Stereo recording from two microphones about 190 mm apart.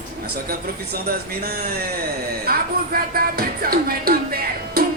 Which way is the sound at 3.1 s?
50° right (ahead or behind).